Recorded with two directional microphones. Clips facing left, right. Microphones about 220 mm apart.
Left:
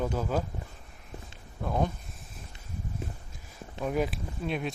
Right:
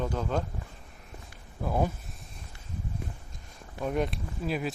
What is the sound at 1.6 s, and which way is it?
Speech, 10° right (ahead or behind).